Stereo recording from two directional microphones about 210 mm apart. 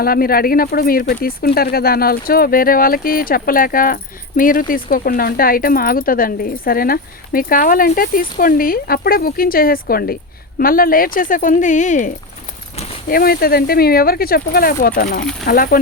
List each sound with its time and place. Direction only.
0.0 s speech: 45° left (ahead or behind)
15.2 s speech: 5° left (ahead or behind)
15.4 s speech: 45° left (ahead or behind)